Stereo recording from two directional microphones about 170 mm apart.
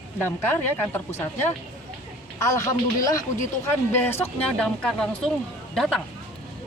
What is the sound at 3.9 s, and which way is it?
Speech, 10° left (ahead or behind).